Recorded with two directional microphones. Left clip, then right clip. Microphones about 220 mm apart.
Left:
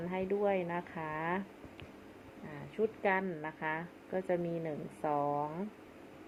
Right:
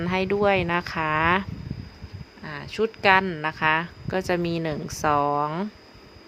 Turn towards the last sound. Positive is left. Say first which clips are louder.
# right 11 dB
turn(degrees=-80)